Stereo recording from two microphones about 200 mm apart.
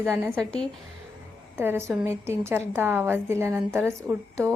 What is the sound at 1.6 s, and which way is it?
A woman's voice, 10° right (ahead or behind).